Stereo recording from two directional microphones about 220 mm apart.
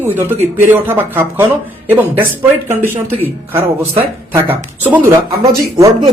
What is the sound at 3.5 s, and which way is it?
Speech, 10° right (ahead or behind).